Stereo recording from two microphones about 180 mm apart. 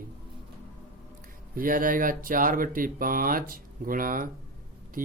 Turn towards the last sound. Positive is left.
turn(degrees=-50)  # may be behind; listen again after turning